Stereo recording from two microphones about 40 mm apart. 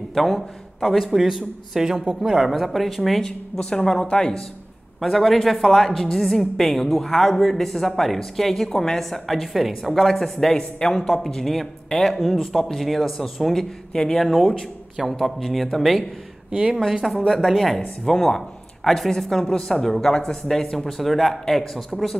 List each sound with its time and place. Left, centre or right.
0.1 s a man's voice: centre
3.5 s speech: centre
5.0 s a man's voice: centre
10.0 s a man's voice: centre
14.2 s a man's voice: centre
16.4 s speech: right
17.3 s a man's voice: centre